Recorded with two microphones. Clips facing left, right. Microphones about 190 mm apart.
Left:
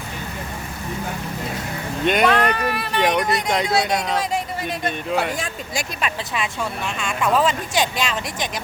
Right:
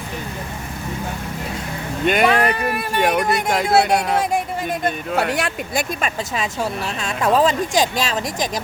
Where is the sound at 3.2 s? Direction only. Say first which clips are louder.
Right 2 dB; 55° right (ahead or behind).